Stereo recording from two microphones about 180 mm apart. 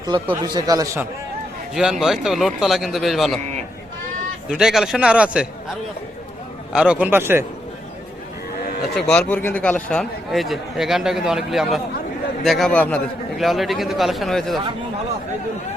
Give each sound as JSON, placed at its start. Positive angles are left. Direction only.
{"t": 0.4, "sound": "speech", "side_deg": -20}
{"t": 1.7, "sound": "a man's voice", "side_deg": -5}
{"t": 4.4, "sound": "a man's voice", "side_deg": -5}
{"t": 6.7, "sound": "a man's voice", "side_deg": -5}
{"t": 9.0, "sound": "a man's voice", "side_deg": 5}